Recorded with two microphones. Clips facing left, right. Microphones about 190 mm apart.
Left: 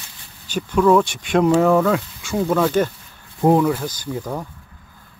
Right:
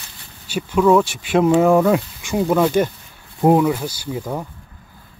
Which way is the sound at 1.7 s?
15° right (ahead or behind).